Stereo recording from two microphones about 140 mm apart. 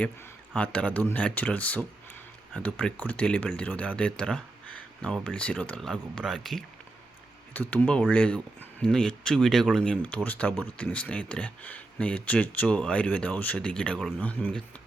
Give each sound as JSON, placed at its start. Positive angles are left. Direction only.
{"t": 0.5, "sound": "speech", "side_deg": 10}
{"t": 7.5, "sound": "speech", "side_deg": 10}